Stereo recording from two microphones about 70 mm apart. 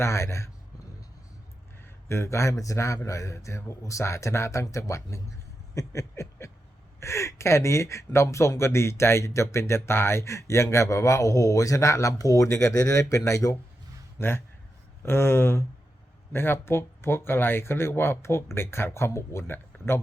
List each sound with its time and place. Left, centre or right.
0.0 s speech: left
2.0 s speech: left
5.7 s a sound: left
7.0 s speech: left
14.2 s a man's voice: left